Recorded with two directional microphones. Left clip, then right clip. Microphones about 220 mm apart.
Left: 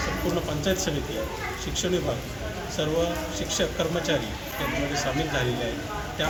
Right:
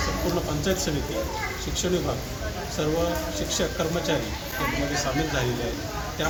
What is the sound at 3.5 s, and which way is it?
Speech, 10° left (ahead or behind).